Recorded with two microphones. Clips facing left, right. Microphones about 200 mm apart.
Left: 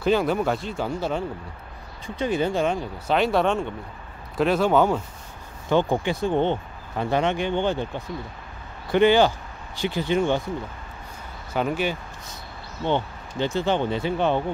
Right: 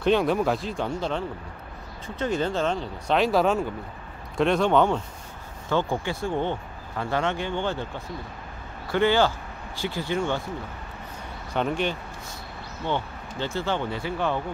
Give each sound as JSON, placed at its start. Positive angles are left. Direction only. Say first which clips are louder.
{"t": 0.0, "sound": "speech", "louder": "even", "side_deg": 0}
{"t": 5.7, "sound": "speech", "louder": "left 4 dB", "side_deg": 20}
{"t": 8.9, "sound": "speech", "louder": "left 4 dB", "side_deg": 15}
{"t": 11.5, "sound": "speech", "louder": "left 1 dB", "side_deg": 5}
{"t": 12.8, "sound": "speech", "louder": "left 4 dB", "side_deg": 20}